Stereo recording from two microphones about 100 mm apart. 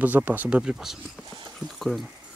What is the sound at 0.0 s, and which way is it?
Speech, 20° right (ahead or behind).